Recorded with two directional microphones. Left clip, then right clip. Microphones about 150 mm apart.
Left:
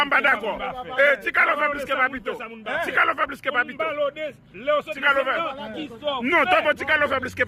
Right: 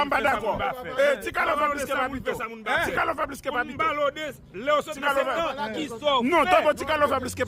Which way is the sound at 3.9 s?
45° right (ahead or behind).